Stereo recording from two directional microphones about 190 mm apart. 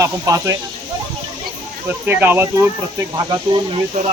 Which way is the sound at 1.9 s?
10° right (ahead or behind).